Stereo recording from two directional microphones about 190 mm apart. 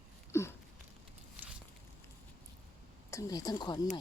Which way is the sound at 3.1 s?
15° left (ahead or behind).